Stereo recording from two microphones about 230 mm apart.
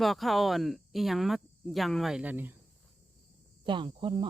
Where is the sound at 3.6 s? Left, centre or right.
Right.